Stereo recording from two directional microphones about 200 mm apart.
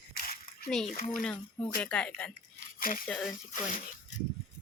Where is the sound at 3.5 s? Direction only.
40° left (ahead or behind).